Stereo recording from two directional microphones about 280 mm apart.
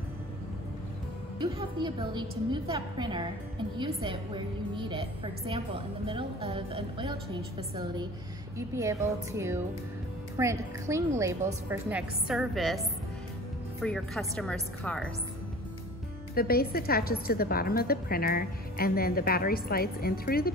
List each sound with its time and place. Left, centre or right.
1.4 s a woman's voice: centre
13.8 s speech: centre
16.3 s a woman's voice: left